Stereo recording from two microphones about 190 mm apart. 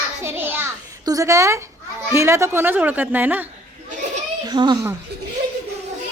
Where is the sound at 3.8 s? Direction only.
40° right (ahead or behind).